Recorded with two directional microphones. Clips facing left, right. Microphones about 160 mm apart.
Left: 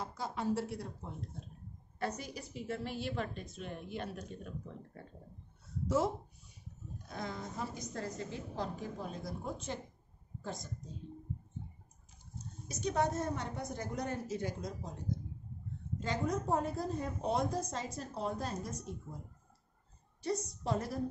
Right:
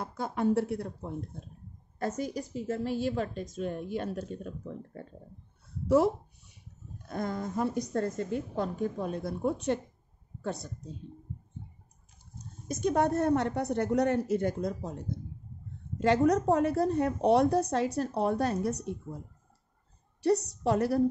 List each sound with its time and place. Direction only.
0.0 s a woman's voice: 55° right (ahead or behind)
2.0 s a woman's voice: 45° right (ahead or behind)
5.9 s speech: 65° right (ahead or behind)
7.1 s a woman's voice: 50° right (ahead or behind); by 10.7 s 65° right (ahead or behind)
12.6 s a woman's voice: 55° right (ahead or behind)
16.0 s a woman's voice: 75° right (ahead or behind)
20.2 s a woman's voice: 70° right (ahead or behind)